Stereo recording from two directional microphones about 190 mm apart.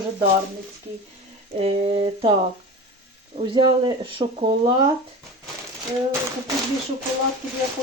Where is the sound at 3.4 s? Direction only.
25° right (ahead or behind).